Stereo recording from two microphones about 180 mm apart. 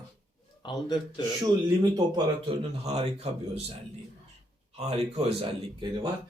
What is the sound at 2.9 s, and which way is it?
Speech, 35° right (ahead or behind).